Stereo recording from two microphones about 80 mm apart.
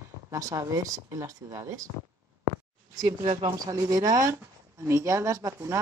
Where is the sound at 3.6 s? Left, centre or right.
Right.